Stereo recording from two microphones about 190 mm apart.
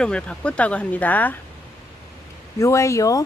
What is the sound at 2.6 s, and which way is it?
Speech, 15° left (ahead or behind).